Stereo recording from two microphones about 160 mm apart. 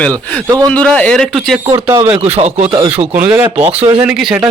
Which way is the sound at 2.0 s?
40° right (ahead or behind).